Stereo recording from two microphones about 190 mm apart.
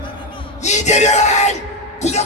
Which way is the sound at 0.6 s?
35° left (ahead or behind).